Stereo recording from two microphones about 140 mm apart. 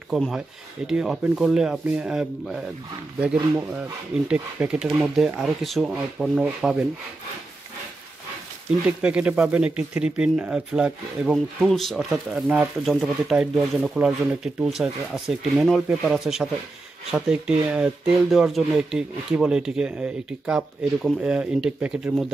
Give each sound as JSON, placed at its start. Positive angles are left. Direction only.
{"t": 0.1, "sound": "speech", "side_deg": 0}
{"t": 8.8, "sound": "speech", "side_deg": -10}